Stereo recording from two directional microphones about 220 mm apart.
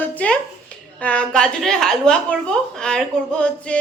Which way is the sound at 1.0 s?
5° left (ahead or behind).